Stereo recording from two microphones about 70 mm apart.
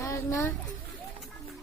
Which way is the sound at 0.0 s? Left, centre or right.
Left.